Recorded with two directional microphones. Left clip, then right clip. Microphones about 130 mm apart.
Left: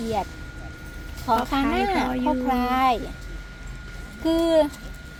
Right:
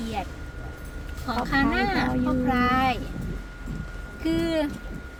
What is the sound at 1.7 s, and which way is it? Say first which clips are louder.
Speech: left 2 dB; 25° left (ahead or behind).